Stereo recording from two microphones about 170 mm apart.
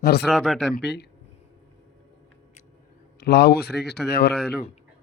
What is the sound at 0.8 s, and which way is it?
Speech, 90° left.